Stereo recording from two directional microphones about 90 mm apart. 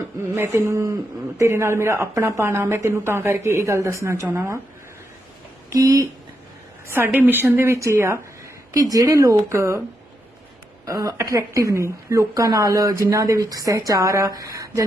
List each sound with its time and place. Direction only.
0.3 s a woman's voice: 30° right (ahead or behind)
5.7 s a woman's voice: 40° right (ahead or behind)
6.8 s a woman's voice: 25° right (ahead or behind)
8.7 s a woman's voice: 40° right (ahead or behind)
10.8 s a woman's voice: 35° right (ahead or behind)